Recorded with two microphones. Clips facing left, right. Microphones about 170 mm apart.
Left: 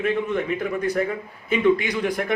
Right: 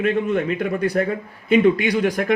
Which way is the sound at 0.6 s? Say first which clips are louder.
Right 3 dB; 70° right (ahead or behind).